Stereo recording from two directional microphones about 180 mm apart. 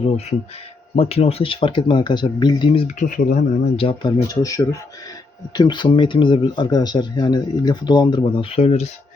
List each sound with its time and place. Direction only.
0.9 s speech: 35° left (ahead or behind)
2.8 s speech: 45° left (ahead or behind)
3.8 s speech: 30° left (ahead or behind)